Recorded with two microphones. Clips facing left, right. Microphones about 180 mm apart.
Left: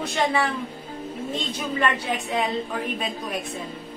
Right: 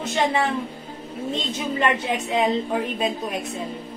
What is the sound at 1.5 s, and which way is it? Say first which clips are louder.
Speech: right 2 dB; 20° right (ahead or behind).